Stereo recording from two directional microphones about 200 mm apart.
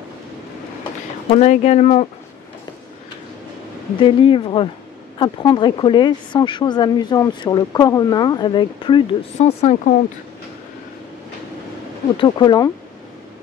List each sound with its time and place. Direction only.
1.3 s a woman's voice: 35° left (ahead or behind)
4.0 s speech: 25° left (ahead or behind)
12.2 s speech: 20° left (ahead or behind)